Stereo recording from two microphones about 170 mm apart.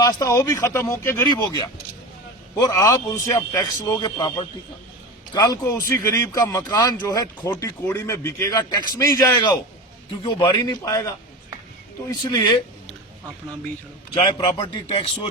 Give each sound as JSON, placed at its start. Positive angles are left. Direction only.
{"t": 0.0, "sound": "a man's voice", "side_deg": 20}
{"t": 12.2, "sound": "a man's voice", "side_deg": 25}
{"t": 14.1, "sound": "a man's voice", "side_deg": 30}